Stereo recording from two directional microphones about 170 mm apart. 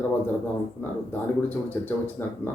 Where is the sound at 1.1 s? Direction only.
10° left (ahead or behind).